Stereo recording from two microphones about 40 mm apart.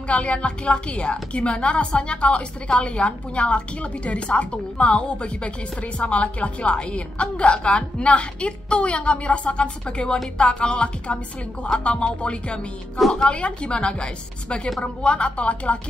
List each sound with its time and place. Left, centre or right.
0.1 s a woman's voice: left